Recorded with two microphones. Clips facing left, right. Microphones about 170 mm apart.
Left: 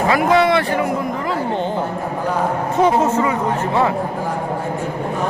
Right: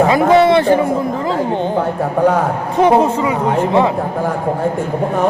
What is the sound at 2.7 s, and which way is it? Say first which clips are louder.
Speech: right 4 dB; 15° right (ahead or behind).